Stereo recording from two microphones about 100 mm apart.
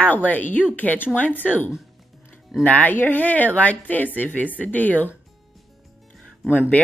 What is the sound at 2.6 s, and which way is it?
Speech, 15° left (ahead or behind).